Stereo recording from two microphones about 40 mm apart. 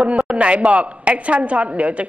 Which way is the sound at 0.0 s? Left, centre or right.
Right.